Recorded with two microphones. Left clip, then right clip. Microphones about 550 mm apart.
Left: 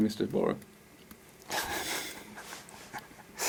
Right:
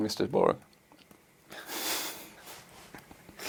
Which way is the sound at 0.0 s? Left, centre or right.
Right.